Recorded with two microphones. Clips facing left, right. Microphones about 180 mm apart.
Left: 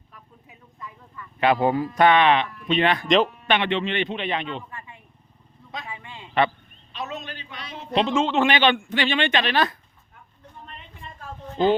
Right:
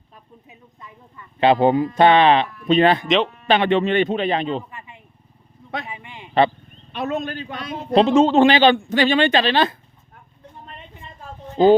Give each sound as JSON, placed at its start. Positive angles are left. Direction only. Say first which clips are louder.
{"t": 0.1, "sound": "a sound", "louder": "right 3 dB", "side_deg": -25}
{"t": 2.0, "sound": "a man's voice", "louder": "right 3 dB", "side_deg": -30}
{"t": 3.1, "sound": "speech", "louder": "even", "side_deg": 0}
{"t": 3.4, "sound": "a man's voice", "louder": "right 6 dB", "side_deg": -35}
{"t": 4.7, "sound": "a sound", "louder": "right 1 dB", "side_deg": -20}
{"t": 6.9, "sound": "a man's voice", "louder": "right 9 dB", "side_deg": -55}
{"t": 7.9, "sound": "a man's voice", "louder": "right 7 dB", "side_deg": -40}